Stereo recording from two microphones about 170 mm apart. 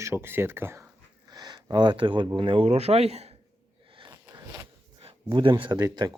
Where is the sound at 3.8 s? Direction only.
30° right (ahead or behind).